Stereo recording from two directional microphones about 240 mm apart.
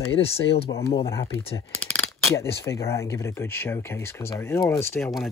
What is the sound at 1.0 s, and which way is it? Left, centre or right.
Speech, centre.